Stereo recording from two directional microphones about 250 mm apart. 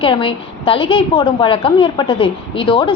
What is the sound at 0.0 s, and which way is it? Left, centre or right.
A woman's voice, left.